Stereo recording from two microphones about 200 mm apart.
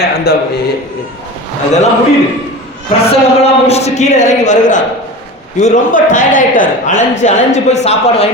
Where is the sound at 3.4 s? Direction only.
30° left (ahead or behind).